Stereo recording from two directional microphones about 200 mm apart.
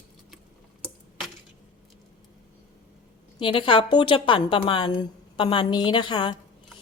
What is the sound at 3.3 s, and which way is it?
A woman's voice, 25° left (ahead or behind).